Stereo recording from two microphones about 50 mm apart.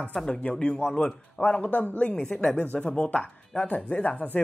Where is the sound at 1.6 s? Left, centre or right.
Left.